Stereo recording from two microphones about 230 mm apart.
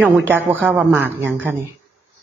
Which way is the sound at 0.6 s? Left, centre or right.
Centre.